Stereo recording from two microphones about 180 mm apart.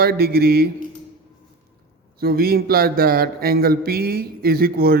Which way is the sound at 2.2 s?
55° right (ahead or behind).